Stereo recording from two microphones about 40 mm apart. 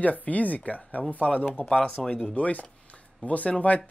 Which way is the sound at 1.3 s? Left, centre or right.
Centre.